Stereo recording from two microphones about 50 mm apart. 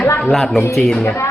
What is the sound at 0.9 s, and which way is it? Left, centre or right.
Speech, centre.